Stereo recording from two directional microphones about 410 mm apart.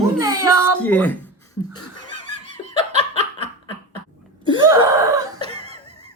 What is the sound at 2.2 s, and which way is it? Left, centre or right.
Laughter, centre.